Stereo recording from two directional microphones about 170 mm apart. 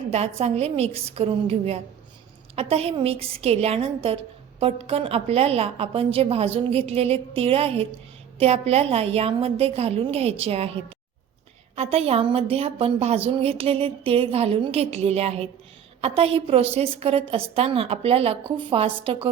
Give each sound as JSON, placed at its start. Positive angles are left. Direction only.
{"t": 0.1, "sound": "a woman's voice", "side_deg": -40}